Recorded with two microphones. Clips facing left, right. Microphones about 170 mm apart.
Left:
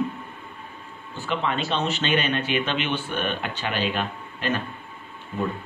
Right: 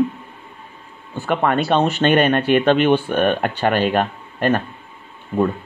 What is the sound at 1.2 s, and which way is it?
Speech, 55° right (ahead or behind).